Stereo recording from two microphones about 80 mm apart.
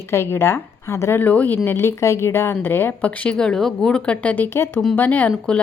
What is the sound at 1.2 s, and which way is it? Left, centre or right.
A woman's voice, left.